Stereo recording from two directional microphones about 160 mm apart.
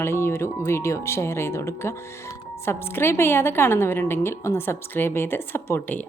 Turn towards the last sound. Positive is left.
turn(degrees=10)  # may be behind; listen again after turning